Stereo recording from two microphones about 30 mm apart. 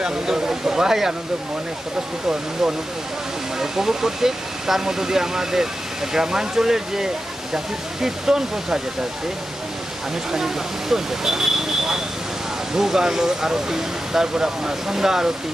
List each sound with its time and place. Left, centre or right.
0.0 s speech: centre
3.5 s speech: centre
10.3 s speech: centre